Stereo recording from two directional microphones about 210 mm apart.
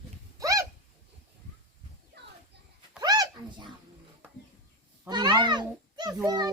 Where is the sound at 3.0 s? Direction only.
15° right (ahead or behind).